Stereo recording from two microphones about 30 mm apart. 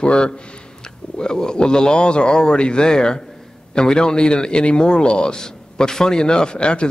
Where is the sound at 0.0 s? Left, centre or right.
Left.